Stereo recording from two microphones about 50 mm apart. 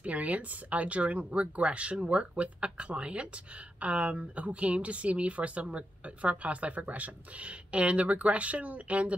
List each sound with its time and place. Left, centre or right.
0.0 s speech: right